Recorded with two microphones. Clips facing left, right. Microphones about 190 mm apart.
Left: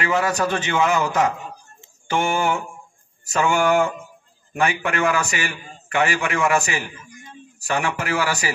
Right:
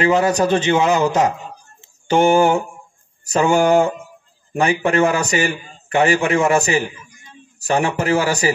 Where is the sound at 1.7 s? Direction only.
35° right (ahead or behind).